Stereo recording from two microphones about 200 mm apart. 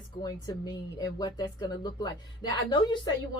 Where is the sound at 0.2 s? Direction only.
20° left (ahead or behind).